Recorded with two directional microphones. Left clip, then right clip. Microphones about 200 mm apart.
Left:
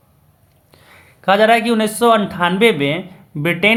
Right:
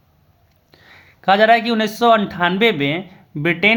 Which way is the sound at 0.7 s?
20° right (ahead or behind).